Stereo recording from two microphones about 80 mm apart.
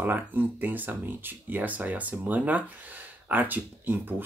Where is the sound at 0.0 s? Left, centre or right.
Right.